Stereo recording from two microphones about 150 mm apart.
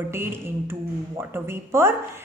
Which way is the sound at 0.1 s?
15° right (ahead or behind).